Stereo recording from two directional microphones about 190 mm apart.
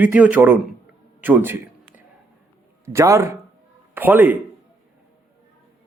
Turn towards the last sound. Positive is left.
turn(degrees=-10)  # may be behind; listen again after turning